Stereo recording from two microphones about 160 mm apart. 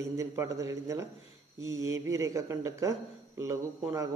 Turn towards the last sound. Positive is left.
turn(degrees=-20)  # may be behind; listen again after turning